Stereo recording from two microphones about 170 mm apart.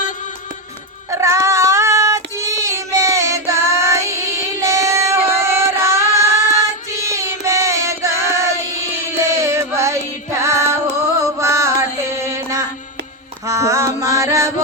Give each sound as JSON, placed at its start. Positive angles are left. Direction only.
{"t": 1.1, "sound": "child singing", "side_deg": -15}
{"t": 6.9, "sound": "music", "side_deg": -15}